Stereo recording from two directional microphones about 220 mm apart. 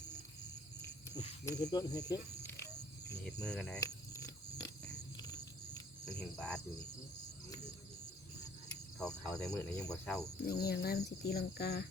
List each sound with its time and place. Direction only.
1.5 s speech: 15° left (ahead or behind)
3.4 s speech: 5° left (ahead or behind)
3.8 s a sound: 15° left (ahead or behind)
5.1 s wild animals: 15° left (ahead or behind)
6.1 s speech: 5° left (ahead or behind)
9.0 s speech: 5° left (ahead or behind)
10.6 s speech: 45° left (ahead or behind)